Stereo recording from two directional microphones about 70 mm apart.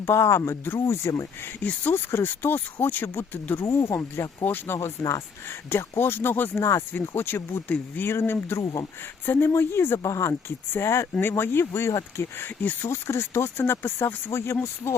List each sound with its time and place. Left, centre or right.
0.0 s speech: left
1.0 s speech: left
1.6 s speech: left
6.0 s speech: left
6.6 s speech: left
11.2 s speech: left